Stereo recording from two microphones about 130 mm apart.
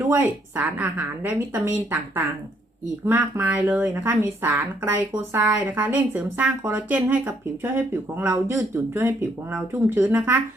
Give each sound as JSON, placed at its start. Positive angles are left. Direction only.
{"t": 0.0, "sound": "speech", "side_deg": -15}
{"t": 3.1, "sound": "speech", "side_deg": -15}